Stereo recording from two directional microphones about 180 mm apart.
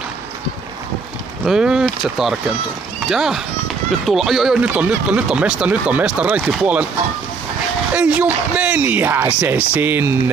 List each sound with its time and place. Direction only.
1.4 s speech: 5° right (ahead or behind)
7.9 s speech: 10° right (ahead or behind)